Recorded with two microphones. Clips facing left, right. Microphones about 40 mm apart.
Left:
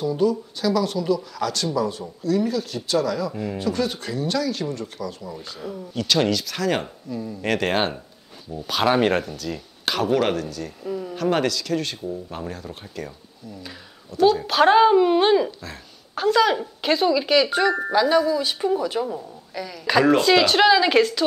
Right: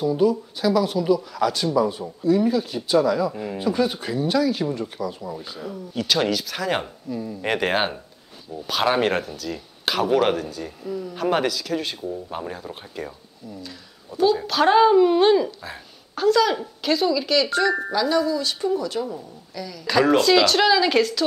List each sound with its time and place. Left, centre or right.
0.0 s speech: centre
10.8 s a woman's voice: centre
11.1 s speech: centre
14.4 s a woman's voice: centre